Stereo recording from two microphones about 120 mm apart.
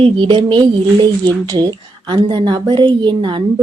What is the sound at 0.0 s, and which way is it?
Speech, 45° right (ahead or behind).